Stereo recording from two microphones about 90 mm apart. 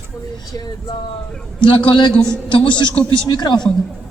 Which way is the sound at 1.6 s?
65° left (ahead or behind).